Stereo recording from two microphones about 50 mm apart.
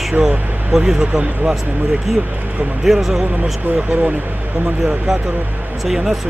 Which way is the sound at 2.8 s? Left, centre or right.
Centre.